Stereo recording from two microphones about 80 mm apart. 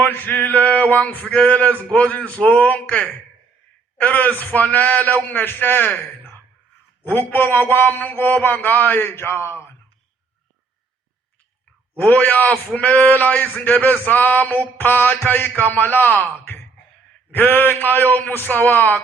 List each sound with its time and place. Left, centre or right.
0.0 s male singing: left
11.9 s male singing: centre